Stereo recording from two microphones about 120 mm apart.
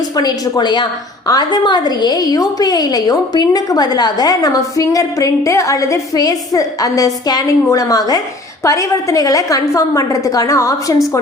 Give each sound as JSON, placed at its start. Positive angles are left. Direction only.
{"t": 0.2, "sound": "a woman's voice", "side_deg": 35}